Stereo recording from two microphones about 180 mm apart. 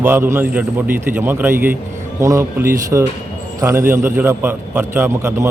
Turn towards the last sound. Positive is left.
turn(degrees=-15)  # may be behind; listen again after turning